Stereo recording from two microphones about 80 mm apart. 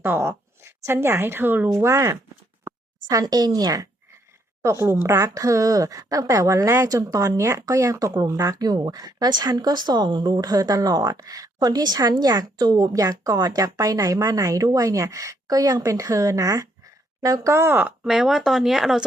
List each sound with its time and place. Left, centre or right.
0.0 s a woman's voice: right
1.7 s speech: right
4.6 s speech: right
17.5 s speech: right
18.0 s speech: centre